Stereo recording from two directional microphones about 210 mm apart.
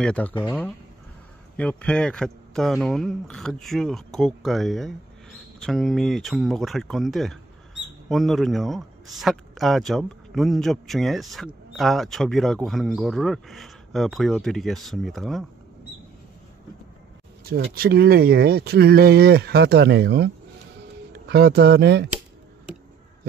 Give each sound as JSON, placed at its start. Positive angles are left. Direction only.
{"t": 0.0, "sound": "speech", "side_deg": 5}
{"t": 17.4, "sound": "speech", "side_deg": -45}